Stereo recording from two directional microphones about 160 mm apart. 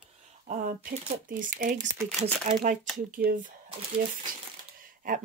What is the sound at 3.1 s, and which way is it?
Speech, 60° right (ahead or behind).